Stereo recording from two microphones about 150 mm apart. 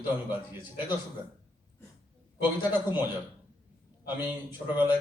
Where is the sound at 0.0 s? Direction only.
15° right (ahead or behind).